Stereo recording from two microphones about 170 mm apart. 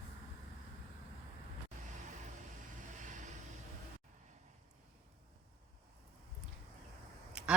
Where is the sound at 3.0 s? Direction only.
45° right (ahead or behind).